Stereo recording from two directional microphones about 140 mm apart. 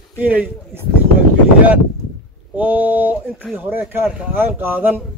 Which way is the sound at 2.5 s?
10° right (ahead or behind).